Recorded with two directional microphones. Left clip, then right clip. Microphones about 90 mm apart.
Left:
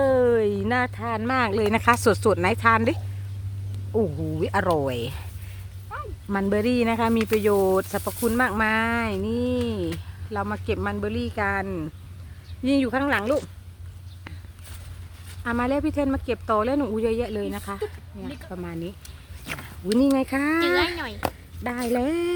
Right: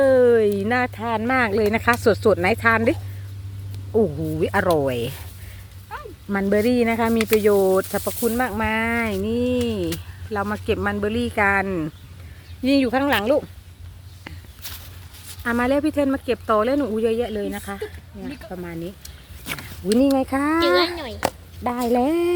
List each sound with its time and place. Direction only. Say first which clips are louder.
0.0 s a sound: right 5 dB; 20° right (ahead or behind)
1.3 s speech: right 3 dB; 20° right (ahead or behind)
1.5 s speech: right 1 dB; centre (ahead or behind); by 5.2 s 25° right (ahead or behind)
6.4 s speech: right 4 dB; 10° right (ahead or behind)
8.4 s speech: left 1 dB; 10° left (ahead or behind)
8.7 s speech: right 1 dB; 5° right (ahead or behind)
9.0 s speech: right 3 dB; 20° right (ahead or behind); by 11.9 s 55° right (ahead or behind)
12.6 s speech: right 4 dB; 40° right (ahead or behind)
15.4 s speech: right 4 dB; 40° right (ahead or behind); by 16.8 s 25° right (ahead or behind)
16.9 s speech: right 3 dB; 5° right (ahead or behind)
20.1 s speech: right 3 dB; centre (ahead or behind)
21.9 s speech: right 5 dB; 20° right (ahead or behind)